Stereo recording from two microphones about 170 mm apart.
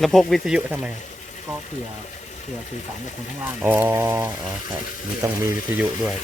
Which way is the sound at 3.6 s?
10° right (ahead or behind).